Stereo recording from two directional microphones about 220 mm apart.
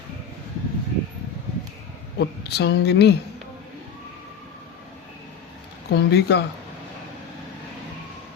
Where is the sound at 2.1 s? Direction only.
50° left (ahead or behind).